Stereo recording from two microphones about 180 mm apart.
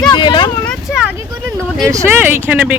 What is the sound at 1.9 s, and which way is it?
Speech, 15° right (ahead or behind).